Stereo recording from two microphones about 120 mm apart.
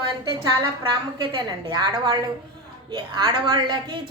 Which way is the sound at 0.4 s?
35° right (ahead or behind).